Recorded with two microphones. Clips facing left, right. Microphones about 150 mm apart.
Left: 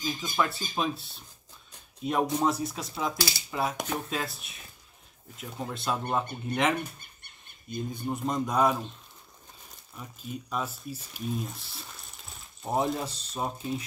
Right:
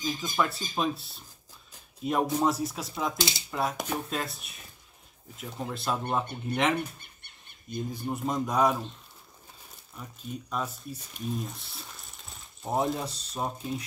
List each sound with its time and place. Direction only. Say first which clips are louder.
0.0 s speech: even; centre (ahead or behind)
3.2 s speech: right 1 dB; 20° right (ahead or behind)
3.4 s speech: left 1 dB; centre (ahead or behind)
9.9 s speech: even; 5° left (ahead or behind)